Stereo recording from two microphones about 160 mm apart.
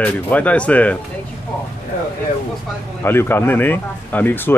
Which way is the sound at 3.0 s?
15° left (ahead or behind).